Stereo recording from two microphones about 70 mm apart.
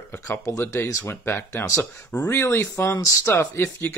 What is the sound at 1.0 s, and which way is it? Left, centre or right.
Speech, left.